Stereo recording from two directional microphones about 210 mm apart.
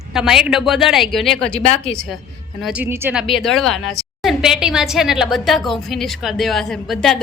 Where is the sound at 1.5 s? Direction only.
30° left (ahead or behind).